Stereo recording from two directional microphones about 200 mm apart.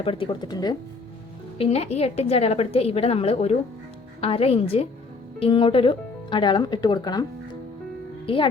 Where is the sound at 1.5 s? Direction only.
30° left (ahead or behind).